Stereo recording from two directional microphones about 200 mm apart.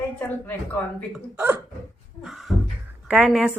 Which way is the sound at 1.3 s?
10° right (ahead or behind).